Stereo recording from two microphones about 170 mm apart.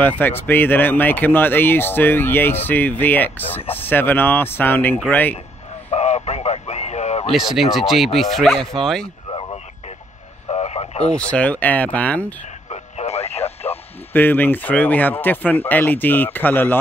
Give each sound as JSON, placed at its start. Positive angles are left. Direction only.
{"t": 0.0, "sound": "speech", "side_deg": 10}
{"t": 5.9, "sound": "radio", "side_deg": 40}
{"t": 7.2, "sound": "speech", "side_deg": 0}
{"t": 9.3, "sound": "radio", "side_deg": 30}
{"t": 11.1, "sound": "speech", "side_deg": 5}
{"t": 12.6, "sound": "radio", "side_deg": 40}
{"t": 14.1, "sound": "speech", "side_deg": 10}